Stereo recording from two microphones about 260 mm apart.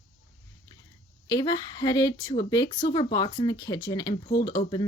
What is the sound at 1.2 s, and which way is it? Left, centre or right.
Speech, centre.